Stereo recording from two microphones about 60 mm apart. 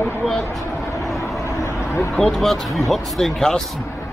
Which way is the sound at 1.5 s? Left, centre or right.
Left.